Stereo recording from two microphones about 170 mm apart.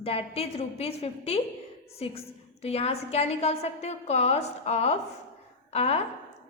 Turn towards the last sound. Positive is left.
turn(degrees=35)  # may be behind; listen again after turning